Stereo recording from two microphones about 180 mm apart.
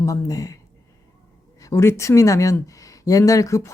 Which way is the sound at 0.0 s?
20° left (ahead or behind).